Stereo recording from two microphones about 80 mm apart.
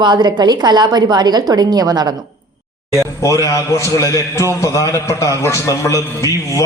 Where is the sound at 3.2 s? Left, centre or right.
Left.